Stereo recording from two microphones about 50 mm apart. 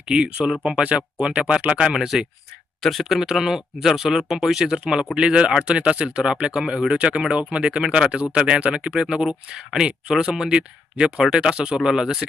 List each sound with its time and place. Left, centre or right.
0.0 s speech: centre
2.8 s speech: centre